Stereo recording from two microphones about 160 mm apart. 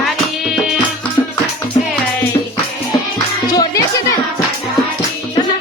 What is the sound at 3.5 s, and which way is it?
Music, 20° left (ahead or behind).